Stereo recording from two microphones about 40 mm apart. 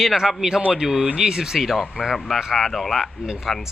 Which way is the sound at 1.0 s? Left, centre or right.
Right.